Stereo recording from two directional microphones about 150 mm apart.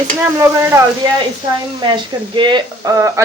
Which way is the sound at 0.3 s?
20° right (ahead or behind).